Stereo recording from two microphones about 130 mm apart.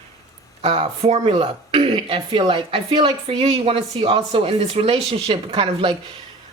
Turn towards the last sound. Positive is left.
turn(degrees=-40)  # may be behind; listen again after turning